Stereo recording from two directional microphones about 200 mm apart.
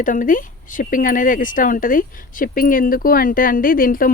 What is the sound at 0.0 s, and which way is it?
Speech, 40° left (ahead or behind).